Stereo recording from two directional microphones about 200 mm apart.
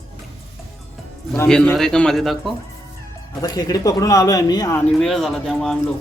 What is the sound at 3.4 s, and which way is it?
Speech, 20° left (ahead or behind).